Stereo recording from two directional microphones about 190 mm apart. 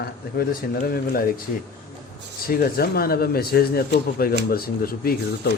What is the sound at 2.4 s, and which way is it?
A man's voice, 50° left (ahead or behind).